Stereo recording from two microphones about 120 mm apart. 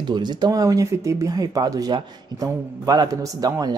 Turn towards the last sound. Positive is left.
turn(degrees=-30)  # may be behind; listen again after turning